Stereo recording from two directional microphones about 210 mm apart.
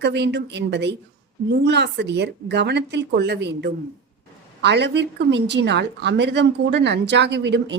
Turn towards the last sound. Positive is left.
turn(degrees=-55)  # may be behind; listen again after turning